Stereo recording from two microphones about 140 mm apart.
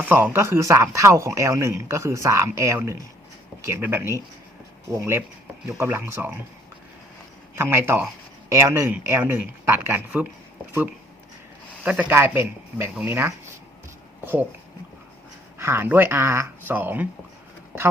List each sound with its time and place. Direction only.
0.0 s speech: 15° right (ahead or behind)
7.5 s speech: 15° right (ahead or behind)
11.8 s speech: 10° right (ahead or behind)
15.5 s speech: 20° right (ahead or behind)